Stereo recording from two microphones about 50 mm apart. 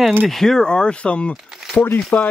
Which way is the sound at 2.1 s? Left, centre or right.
Left.